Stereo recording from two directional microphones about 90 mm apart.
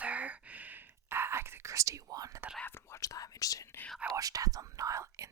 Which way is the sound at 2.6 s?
35° left (ahead or behind).